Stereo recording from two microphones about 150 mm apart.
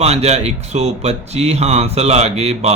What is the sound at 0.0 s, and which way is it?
A man's voice, 45° right (ahead or behind).